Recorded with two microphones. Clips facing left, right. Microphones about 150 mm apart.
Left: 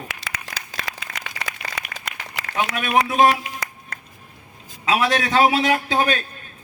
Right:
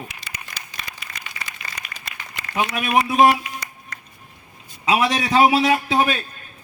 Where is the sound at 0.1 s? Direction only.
90° left.